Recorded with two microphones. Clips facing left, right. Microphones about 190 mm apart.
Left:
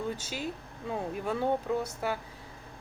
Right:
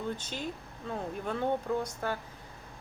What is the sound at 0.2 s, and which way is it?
A woman's voice, 10° left (ahead or behind).